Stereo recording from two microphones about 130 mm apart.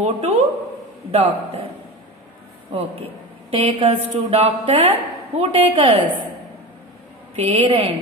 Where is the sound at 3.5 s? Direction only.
40° right (ahead or behind).